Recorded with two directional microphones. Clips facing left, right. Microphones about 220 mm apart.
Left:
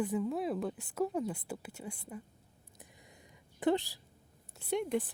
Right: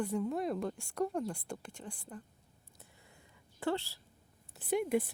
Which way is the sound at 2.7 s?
15° left (ahead or behind).